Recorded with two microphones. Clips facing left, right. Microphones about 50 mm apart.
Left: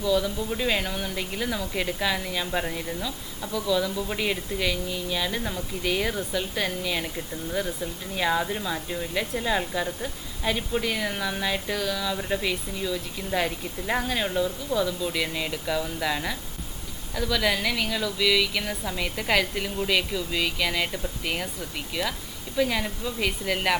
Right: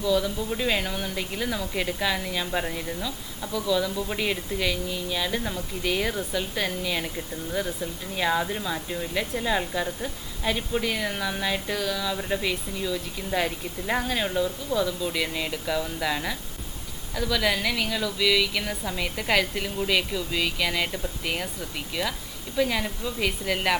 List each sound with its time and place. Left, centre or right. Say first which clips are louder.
0.0 s speech: even; centre